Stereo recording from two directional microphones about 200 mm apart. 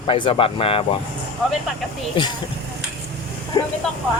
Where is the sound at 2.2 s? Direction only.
25° left (ahead or behind).